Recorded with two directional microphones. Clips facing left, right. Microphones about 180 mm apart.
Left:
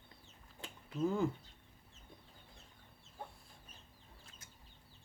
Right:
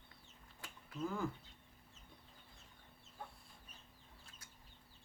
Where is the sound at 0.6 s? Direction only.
25° left (ahead or behind).